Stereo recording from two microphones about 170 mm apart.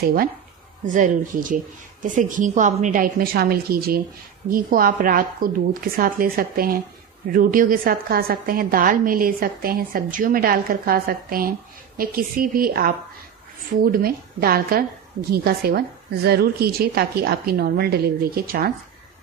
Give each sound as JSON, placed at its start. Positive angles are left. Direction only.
{"t": 0.0, "sound": "a woman's voice", "side_deg": -55}